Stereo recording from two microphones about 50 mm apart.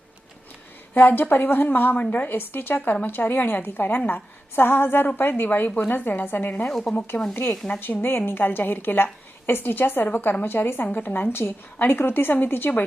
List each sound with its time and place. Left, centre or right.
1.0 s a woman's voice: left
6.7 s speech: centre
7.1 s a woman's voice: left
7.8 s a woman's voice: left